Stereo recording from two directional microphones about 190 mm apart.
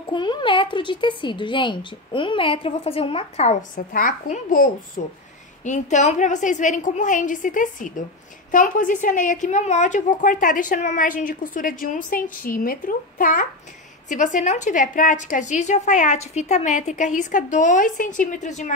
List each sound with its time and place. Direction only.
0.1 s speech: 25° left (ahead or behind)
3.7 s a woman's voice: 45° left (ahead or behind)